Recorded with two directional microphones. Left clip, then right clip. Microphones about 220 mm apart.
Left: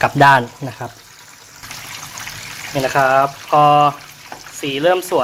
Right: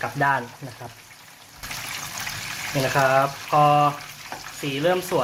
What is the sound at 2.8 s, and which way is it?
Speech, 50° left (ahead or behind).